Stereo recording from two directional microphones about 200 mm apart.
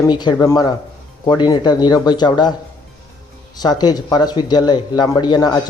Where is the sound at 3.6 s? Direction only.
20° left (ahead or behind).